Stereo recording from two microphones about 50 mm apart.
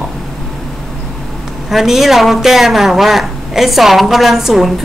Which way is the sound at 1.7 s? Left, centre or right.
Centre.